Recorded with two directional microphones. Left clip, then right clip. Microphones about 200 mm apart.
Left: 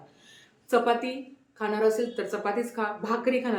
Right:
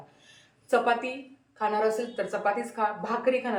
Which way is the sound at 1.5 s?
20° left (ahead or behind).